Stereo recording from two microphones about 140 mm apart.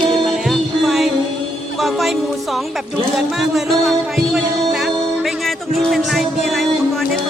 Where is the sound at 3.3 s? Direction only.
Centre (ahead or behind).